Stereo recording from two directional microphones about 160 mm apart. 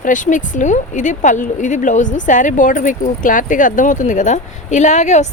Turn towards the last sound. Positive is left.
turn(degrees=45)  # may be behind; listen again after turning